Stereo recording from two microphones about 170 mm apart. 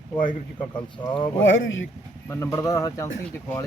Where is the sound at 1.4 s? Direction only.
90° left.